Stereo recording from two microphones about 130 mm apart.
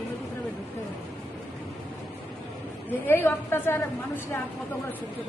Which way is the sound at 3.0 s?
15° left (ahead or behind).